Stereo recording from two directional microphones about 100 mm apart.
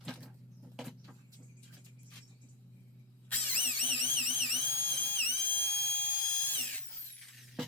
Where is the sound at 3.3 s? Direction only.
20° left (ahead or behind).